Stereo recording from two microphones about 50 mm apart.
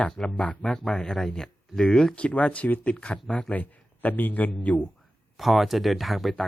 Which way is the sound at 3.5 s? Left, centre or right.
Left.